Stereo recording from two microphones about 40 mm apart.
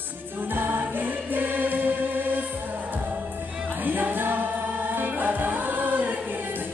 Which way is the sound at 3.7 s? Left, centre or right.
Right.